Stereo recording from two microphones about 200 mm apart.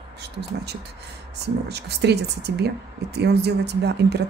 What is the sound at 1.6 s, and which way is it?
Speech, 55° right (ahead or behind).